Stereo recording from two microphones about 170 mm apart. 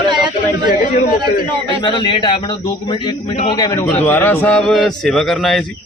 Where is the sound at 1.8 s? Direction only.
30° left (ahead or behind).